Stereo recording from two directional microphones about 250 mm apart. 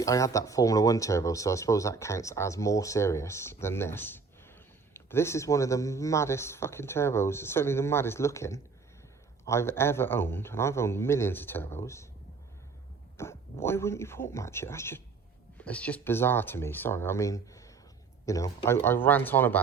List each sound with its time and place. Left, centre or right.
0.0 s speech: centre
13.1 s speech: centre